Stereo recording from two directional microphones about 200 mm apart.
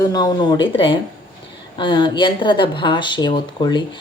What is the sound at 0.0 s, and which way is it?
Speech, 20° left (ahead or behind).